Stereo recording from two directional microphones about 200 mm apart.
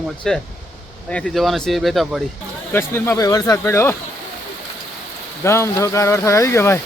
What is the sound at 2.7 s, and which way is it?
Speech, 10° left (ahead or behind).